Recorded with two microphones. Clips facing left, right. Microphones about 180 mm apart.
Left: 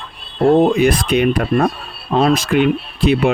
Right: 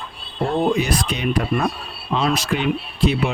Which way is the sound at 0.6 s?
55° left (ahead or behind).